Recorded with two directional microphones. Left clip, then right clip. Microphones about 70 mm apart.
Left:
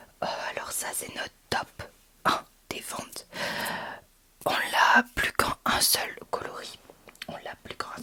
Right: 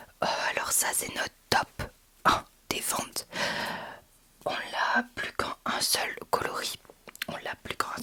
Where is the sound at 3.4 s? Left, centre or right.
Centre.